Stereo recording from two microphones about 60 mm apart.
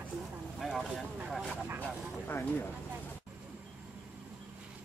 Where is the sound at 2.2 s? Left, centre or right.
Left.